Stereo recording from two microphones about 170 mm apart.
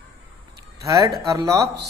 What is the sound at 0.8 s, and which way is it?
Speech, 20° right (ahead or behind).